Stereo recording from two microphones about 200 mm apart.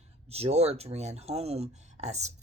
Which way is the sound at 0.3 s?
30° right (ahead or behind).